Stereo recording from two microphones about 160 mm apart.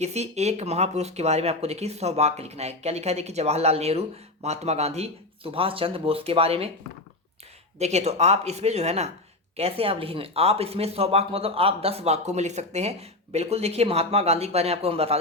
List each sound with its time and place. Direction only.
0.0 s speech: 45° right (ahead or behind)
7.8 s speech: 45° right (ahead or behind)